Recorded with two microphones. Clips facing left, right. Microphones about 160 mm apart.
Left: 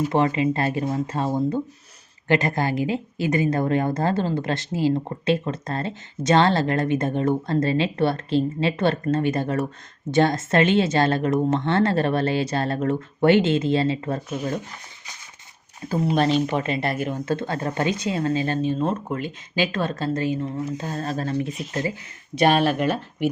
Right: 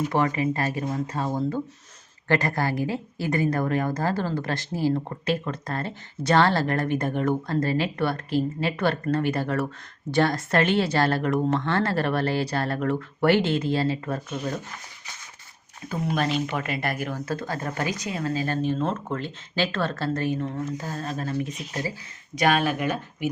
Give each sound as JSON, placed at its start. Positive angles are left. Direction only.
{"t": 0.1, "sound": "a woman's voice", "side_deg": 25}
{"t": 15.9, "sound": "a woman's voice", "side_deg": 30}
{"t": 20.7, "sound": "a woman's voice", "side_deg": 25}
{"t": 21.0, "sound": "speech", "side_deg": 35}
{"t": 22.4, "sound": "a woman's voice", "side_deg": 30}